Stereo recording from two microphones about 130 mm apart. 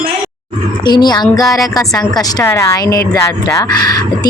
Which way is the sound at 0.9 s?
35° left (ahead or behind).